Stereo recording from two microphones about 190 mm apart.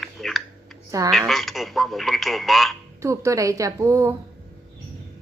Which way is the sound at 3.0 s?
15° right (ahead or behind).